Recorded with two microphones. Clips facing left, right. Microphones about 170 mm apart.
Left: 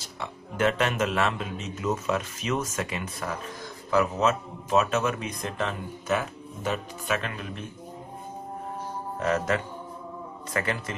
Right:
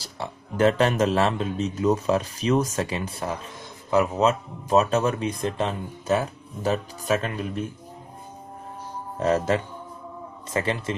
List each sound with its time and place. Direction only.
0.0 s speech: 35° right (ahead or behind)
9.2 s a man's voice: 30° right (ahead or behind)